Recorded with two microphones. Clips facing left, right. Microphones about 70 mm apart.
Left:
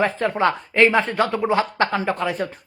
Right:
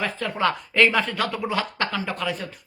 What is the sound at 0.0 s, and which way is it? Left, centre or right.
Speech, left.